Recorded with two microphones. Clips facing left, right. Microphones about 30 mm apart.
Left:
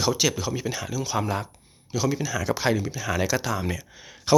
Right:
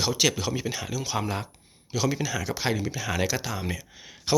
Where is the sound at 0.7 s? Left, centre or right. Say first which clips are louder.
Left 2 dB; centre.